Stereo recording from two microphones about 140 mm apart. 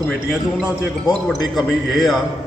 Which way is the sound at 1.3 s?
Centre (ahead or behind).